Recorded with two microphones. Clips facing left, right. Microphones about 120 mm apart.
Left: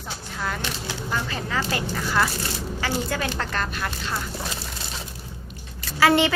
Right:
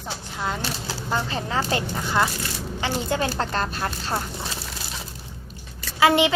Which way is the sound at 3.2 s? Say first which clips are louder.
Right 3 dB; 35° right (ahead or behind).